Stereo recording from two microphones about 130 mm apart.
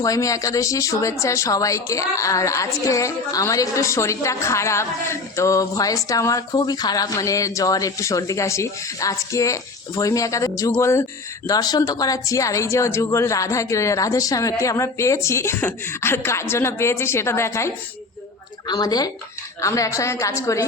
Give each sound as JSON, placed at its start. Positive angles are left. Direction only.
{"t": 0.0, "sound": "speech", "side_deg": 25}
{"t": 18.7, "sound": "speech", "side_deg": 30}